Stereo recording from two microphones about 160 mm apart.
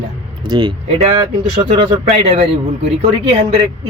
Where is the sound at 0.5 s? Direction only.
25° right (ahead or behind).